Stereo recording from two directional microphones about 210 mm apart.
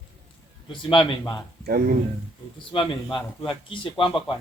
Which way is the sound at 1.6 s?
45° right (ahead or behind).